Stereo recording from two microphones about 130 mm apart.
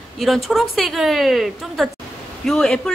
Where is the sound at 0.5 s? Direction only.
Centre (ahead or behind).